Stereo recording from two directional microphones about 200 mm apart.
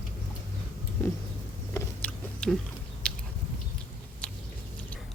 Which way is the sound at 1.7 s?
10° left (ahead or behind).